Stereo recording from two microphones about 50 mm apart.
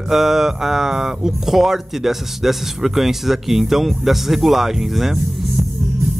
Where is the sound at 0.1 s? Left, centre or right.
Centre.